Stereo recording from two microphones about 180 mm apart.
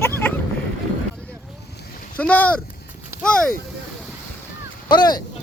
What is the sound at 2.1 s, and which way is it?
Speech, 10° left (ahead or behind).